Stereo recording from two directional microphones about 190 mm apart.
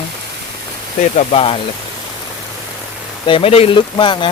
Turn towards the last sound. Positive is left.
turn(degrees=25)  # may be behind; listen again after turning